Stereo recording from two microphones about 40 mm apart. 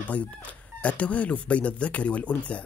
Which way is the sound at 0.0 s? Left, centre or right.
Left.